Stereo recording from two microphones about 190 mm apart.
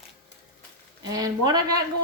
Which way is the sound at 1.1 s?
20° right (ahead or behind).